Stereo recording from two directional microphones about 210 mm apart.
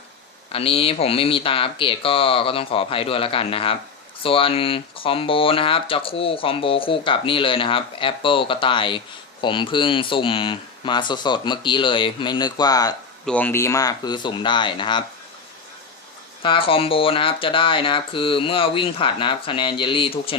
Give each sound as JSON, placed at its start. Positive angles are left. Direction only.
{"t": 0.5, "sound": "speech", "side_deg": 25}
{"t": 13.2, "sound": "speech", "side_deg": 10}
{"t": 16.4, "sound": "speech", "side_deg": 25}